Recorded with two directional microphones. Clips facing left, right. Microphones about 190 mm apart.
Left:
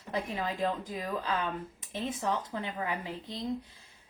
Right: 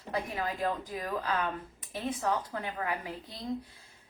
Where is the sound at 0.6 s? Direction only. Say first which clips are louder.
Left 1 dB; 25° left (ahead or behind).